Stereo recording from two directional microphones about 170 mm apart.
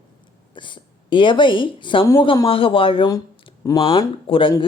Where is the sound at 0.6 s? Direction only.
30° left (ahead or behind).